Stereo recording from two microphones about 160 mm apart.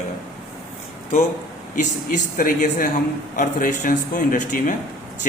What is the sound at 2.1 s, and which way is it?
A man's voice, 55° left (ahead or behind).